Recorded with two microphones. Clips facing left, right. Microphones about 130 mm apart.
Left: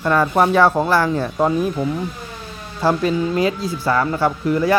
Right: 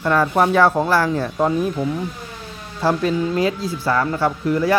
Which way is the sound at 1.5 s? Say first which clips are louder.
Left 1 dB; 5° left (ahead or behind).